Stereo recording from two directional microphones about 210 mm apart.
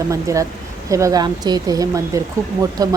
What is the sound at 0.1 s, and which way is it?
Speech, 15° right (ahead or behind).